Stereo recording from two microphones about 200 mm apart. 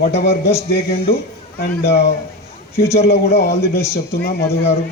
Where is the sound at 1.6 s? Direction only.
55° left (ahead or behind).